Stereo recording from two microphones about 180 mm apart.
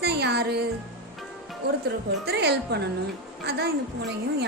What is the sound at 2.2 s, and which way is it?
A woman's voice, 65° right (ahead or behind).